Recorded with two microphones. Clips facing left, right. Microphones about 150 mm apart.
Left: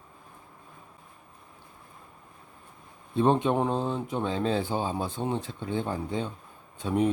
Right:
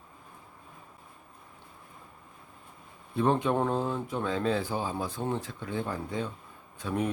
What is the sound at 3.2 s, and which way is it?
Speech, 25° left (ahead or behind).